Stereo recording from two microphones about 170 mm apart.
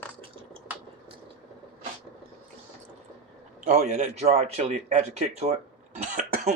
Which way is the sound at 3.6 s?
40° right (ahead or behind).